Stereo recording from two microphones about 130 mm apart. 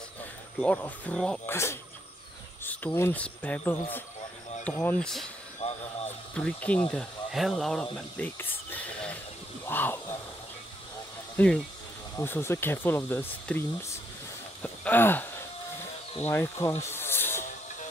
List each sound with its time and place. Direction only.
0.2 s speech: 10° left (ahead or behind)
1.4 s speech: 20° left (ahead or behind)
5.6 s a sound: 55° left (ahead or behind)
6.0 s a sound: 10° left (ahead or behind)
6.9 s speech: centre (ahead or behind)
11.3 s speech: 10° left (ahead or behind)
12.2 s speech: 20° left (ahead or behind)
14.6 s a sound: 15° left (ahead or behind)
16.2 s speech: 20° left (ahead or behind)